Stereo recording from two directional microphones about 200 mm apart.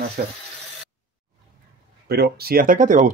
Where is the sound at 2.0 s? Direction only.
50° right (ahead or behind).